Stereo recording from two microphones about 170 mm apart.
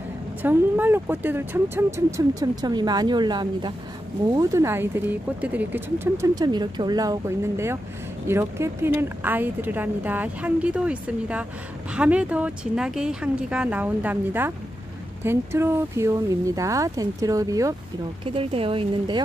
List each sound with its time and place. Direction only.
0.4 s speech: 10° right (ahead or behind)
18.2 s speech: 35° right (ahead or behind)